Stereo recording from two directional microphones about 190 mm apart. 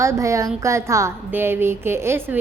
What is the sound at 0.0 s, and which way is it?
A woman's voice, 15° right (ahead or behind).